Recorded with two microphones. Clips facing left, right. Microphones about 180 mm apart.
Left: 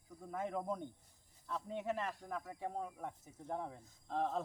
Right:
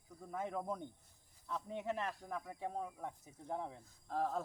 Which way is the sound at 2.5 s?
15° right (ahead or behind).